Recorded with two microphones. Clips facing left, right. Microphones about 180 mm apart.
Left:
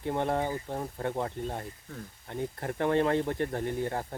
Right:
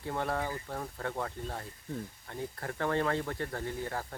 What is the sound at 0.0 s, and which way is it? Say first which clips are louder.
Speech: left 5 dB; 20° left (ahead or behind).